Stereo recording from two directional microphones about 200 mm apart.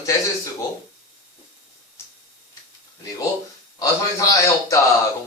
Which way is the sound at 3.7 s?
15° left (ahead or behind).